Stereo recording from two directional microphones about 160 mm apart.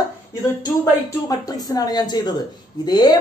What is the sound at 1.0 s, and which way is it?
Speech, 20° left (ahead or behind).